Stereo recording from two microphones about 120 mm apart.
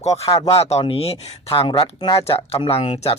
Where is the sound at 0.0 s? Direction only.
65° left (ahead or behind).